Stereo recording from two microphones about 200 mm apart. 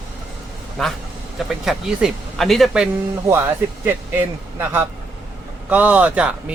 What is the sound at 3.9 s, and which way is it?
Speech, 10° right (ahead or behind).